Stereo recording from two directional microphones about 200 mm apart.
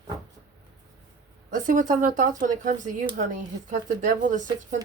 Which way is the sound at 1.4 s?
40° right (ahead or behind).